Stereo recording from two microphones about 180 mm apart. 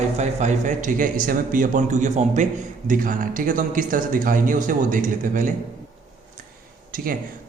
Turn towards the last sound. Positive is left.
turn(degrees=-50)  # may be behind; listen again after turning